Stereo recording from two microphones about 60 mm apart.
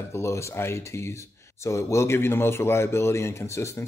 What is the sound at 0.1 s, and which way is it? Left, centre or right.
Speech, left.